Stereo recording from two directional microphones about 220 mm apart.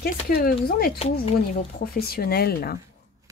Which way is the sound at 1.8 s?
45° left (ahead or behind).